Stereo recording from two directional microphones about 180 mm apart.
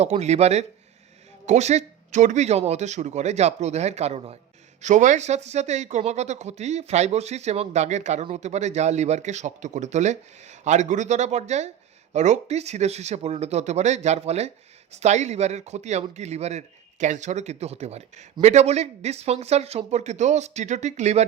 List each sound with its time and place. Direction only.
0.0 s speech: 40° right (ahead or behind)